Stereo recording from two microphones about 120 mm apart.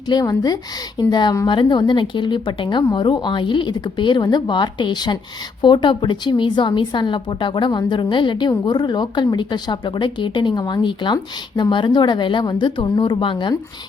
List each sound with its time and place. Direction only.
0.1 s a woman's voice: 35° left (ahead or behind)